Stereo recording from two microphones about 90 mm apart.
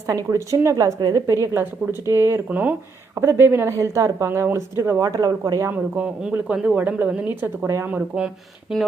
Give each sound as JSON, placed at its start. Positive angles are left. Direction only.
{"t": 0.1, "sound": "a woman's voice", "side_deg": -35}
{"t": 2.5, "sound": "a woman's voice", "side_deg": -20}
{"t": 5.7, "sound": "speech", "side_deg": -15}